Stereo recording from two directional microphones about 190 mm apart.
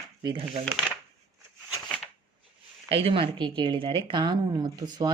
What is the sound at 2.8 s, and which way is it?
Speech, 30° right (ahead or behind).